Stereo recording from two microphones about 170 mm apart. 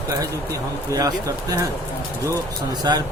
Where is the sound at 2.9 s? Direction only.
25° right (ahead or behind).